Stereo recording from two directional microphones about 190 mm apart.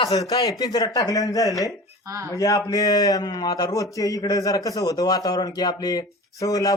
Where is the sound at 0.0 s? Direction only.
20° left (ahead or behind).